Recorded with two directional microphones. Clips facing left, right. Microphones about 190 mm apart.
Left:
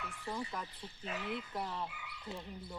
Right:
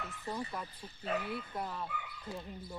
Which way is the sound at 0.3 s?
10° right (ahead or behind).